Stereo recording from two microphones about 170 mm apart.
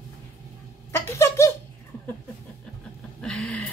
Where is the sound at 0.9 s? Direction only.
15° left (ahead or behind).